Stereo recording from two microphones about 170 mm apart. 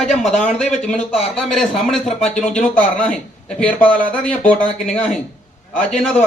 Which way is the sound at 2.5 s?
5° left (ahead or behind).